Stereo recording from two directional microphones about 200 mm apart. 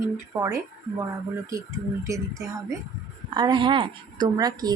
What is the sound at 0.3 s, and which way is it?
Speech, 15° right (ahead or behind).